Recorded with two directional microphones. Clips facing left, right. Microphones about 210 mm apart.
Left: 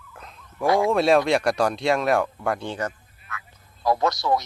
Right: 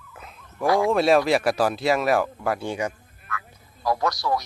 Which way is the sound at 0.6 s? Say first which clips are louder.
Even; 20° left (ahead or behind).